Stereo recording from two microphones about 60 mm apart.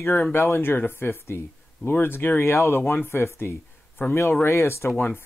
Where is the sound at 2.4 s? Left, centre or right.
Left.